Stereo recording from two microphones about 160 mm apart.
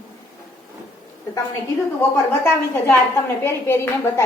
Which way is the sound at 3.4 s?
15° left (ahead or behind).